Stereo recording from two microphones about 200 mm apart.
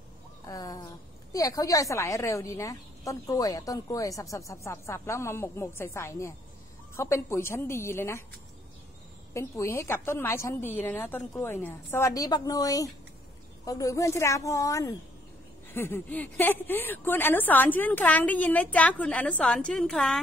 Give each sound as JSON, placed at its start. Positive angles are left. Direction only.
{"t": 0.5, "sound": "a woman's voice", "side_deg": 20}
{"t": 9.3, "sound": "a woman's voice", "side_deg": 15}